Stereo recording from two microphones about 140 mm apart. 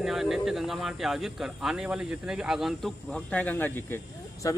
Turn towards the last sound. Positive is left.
turn(degrees=25)  # may be behind; listen again after turning